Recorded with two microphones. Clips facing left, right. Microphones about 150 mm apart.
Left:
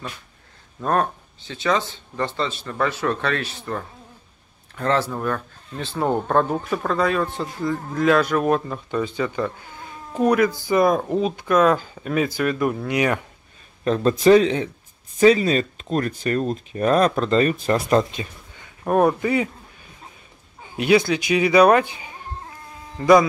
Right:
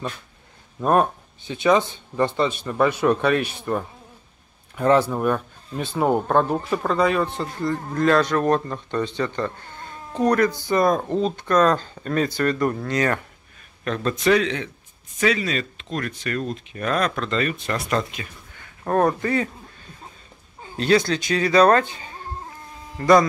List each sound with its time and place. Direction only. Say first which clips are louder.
0.7 s speech: right 3 dB; 15° right (ahead or behind); by 13.2 s 15° left (ahead or behind)
13.8 s speech: left 5 dB; 30° left (ahead or behind)
18.6 s a sound: left 2 dB; 15° left (ahead or behind)
20.7 s speech: left 2 dB; 10° left (ahead or behind)